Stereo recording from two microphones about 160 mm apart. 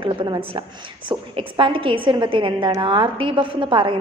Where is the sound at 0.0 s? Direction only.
30° right (ahead or behind).